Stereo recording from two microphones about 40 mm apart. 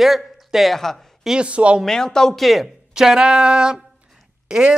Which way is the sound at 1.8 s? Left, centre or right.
Centre.